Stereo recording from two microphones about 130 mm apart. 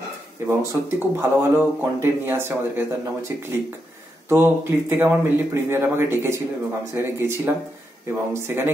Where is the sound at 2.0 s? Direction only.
20° right (ahead or behind).